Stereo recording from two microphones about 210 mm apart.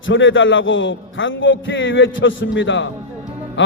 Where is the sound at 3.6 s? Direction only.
65° left (ahead or behind).